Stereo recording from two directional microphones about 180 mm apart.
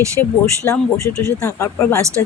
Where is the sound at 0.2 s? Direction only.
15° left (ahead or behind).